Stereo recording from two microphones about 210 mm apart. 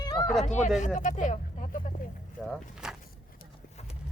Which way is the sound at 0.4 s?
35° left (ahead or behind).